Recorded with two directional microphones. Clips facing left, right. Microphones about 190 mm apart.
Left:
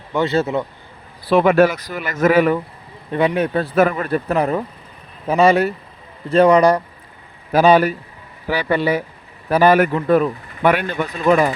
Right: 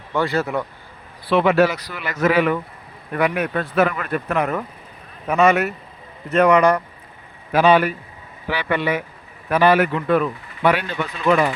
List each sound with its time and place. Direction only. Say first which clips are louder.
0.1 s speech: left 3 dB; 20° left (ahead or behind)
1.3 s speech: left 3 dB; 45° left (ahead or behind)
3.1 s speech: left 3 dB; 25° left (ahead or behind)